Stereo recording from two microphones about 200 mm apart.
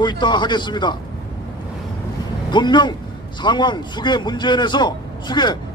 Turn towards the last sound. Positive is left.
turn(degrees=20)  # may be behind; listen again after turning